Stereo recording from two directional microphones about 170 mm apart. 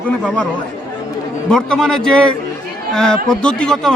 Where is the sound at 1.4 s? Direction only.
5° left (ahead or behind).